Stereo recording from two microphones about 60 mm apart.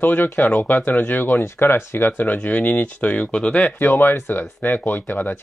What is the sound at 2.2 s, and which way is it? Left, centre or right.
Speech, left.